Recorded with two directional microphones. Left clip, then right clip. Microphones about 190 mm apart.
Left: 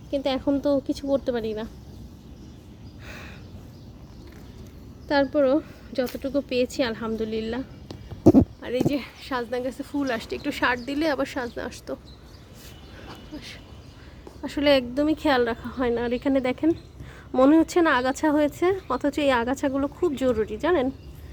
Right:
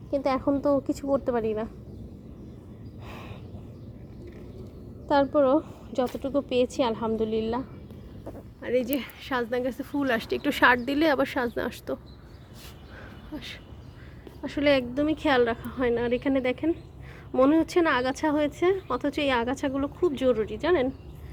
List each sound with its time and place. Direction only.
0.2 s speech: 10° left (ahead or behind)
1.0 s speech: 15° left (ahead or behind)
3.1 s a sound: 10° left (ahead or behind)
5.0 s a woman's voice: 5° left (ahead or behind)
8.6 s a woman's voice: centre (ahead or behind); by 11.9 s 20° right (ahead or behind)
14.4 s a woman's voice: 5° left (ahead or behind)